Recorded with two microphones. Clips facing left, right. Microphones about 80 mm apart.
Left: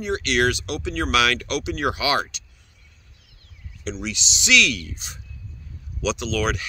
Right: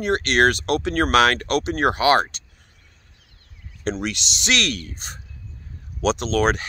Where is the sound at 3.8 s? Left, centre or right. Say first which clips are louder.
Right 4 dB; right.